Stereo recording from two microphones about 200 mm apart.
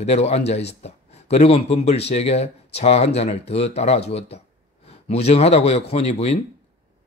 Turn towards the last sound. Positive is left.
turn(degrees=30)  # may be behind; listen again after turning